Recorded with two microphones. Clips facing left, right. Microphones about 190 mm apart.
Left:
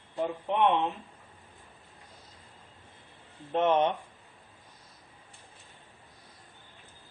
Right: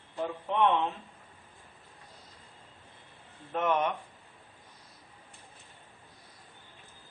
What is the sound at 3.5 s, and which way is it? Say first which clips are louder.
Speech: left 4 dB; 30° left (ahead or behind).